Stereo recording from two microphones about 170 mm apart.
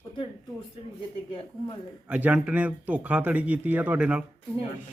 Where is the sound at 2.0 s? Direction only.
10° right (ahead or behind).